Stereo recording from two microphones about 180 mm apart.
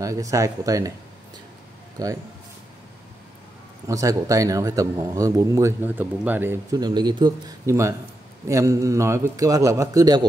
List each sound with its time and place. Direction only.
0.0 s a man's voice: 20° right (ahead or behind)
2.0 s speech: 20° right (ahead or behind)
3.8 s a man's voice: 20° right (ahead or behind)